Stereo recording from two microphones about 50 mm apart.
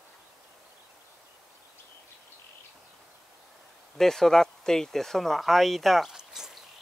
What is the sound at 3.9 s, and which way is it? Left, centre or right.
Speech, centre.